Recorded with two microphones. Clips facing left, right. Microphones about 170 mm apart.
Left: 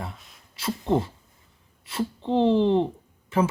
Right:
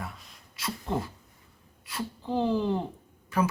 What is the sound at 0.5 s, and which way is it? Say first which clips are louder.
Speech: left 8 dB; 30° left (ahead or behind).